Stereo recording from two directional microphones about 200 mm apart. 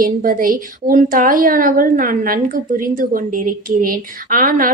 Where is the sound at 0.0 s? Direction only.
45° right (ahead or behind).